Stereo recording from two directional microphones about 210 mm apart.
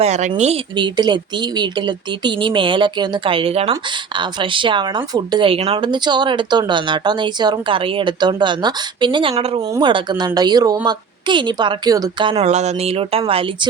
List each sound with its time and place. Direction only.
0.0 s speech: 35° right (ahead or behind)